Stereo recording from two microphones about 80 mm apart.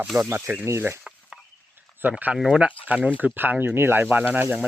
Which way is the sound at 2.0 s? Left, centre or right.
Right.